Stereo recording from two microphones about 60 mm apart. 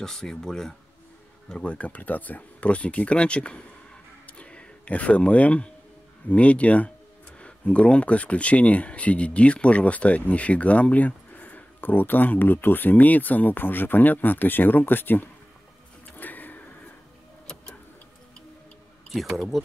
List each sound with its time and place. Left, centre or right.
0.0 s speech: centre
1.5 s speech: centre
16.2 s a sound: left
19.0 s speech: centre